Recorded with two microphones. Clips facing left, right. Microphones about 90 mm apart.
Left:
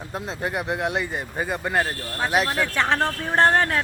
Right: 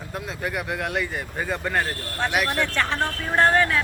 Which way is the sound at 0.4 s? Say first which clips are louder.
Left 3 dB; 25° left (ahead or behind).